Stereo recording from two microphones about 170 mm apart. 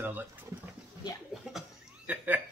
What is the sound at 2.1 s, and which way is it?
Speech, 10° right (ahead or behind).